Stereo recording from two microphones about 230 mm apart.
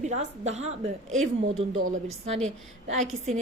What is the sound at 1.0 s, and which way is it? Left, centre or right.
Speech, right.